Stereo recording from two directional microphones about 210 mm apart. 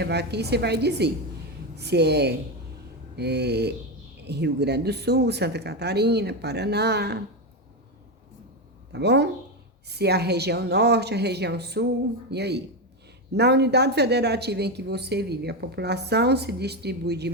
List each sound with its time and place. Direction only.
0.0 s a woman's voice: 50° right (ahead or behind)
8.9 s a woman's voice: 55° right (ahead or behind)